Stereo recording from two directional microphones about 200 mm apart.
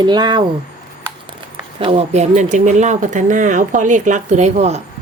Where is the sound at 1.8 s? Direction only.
30° right (ahead or behind).